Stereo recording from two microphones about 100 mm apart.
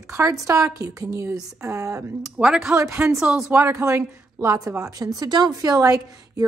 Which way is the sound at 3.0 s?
10° right (ahead or behind).